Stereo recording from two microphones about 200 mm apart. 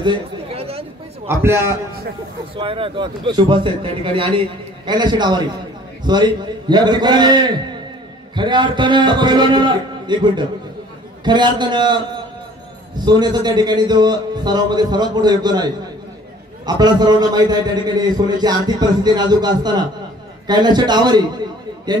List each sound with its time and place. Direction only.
0.0 s chatter: 25° right (ahead or behind)
1.2 s a man's voice: 15° right (ahead or behind)
2.5 s a man's voice: 25° right (ahead or behind)